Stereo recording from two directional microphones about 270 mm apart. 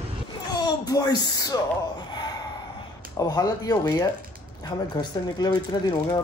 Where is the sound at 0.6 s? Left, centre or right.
Centre.